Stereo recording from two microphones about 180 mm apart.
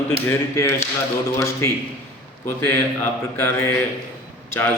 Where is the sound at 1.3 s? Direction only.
15° left (ahead or behind).